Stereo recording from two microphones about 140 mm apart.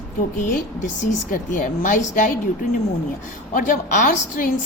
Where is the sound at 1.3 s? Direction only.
70° left (ahead or behind).